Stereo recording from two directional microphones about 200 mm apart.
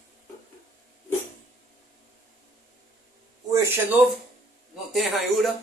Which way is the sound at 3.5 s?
10° right (ahead or behind).